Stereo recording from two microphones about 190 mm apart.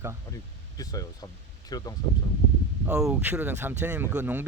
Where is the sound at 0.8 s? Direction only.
20° left (ahead or behind).